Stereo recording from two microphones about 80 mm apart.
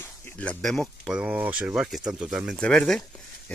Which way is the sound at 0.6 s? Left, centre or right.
Centre.